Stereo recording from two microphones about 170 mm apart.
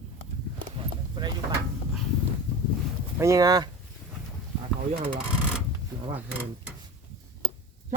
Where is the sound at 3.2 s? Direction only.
20° right (ahead or behind).